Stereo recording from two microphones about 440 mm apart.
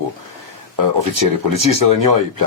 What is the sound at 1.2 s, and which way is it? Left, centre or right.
Speech, right.